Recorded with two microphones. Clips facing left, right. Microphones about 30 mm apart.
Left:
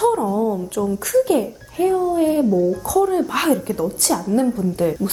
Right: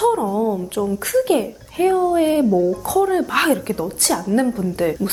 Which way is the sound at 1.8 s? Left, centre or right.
Right.